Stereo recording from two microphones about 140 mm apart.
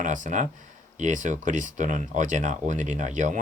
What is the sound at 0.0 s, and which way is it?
Speech, 65° right (ahead or behind).